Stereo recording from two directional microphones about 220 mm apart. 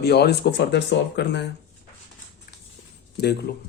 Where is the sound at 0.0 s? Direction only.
50° left (ahead or behind).